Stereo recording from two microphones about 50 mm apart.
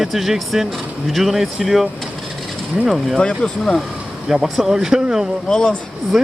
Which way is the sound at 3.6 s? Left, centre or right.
Centre.